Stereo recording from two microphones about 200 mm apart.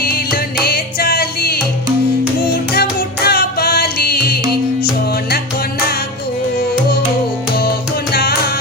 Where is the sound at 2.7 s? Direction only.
50° left (ahead or behind).